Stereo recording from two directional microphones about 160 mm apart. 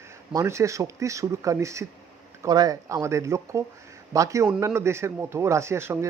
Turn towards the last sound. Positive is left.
turn(degrees=-15)  # may be behind; listen again after turning